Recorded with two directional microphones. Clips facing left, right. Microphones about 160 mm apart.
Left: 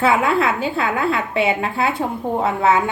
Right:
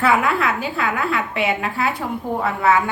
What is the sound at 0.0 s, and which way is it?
A woman's voice, 25° left (ahead or behind).